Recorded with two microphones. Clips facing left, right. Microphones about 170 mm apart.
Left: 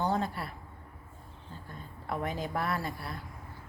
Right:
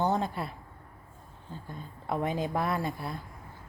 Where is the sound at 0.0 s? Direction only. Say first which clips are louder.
Right 2 dB; 20° right (ahead or behind).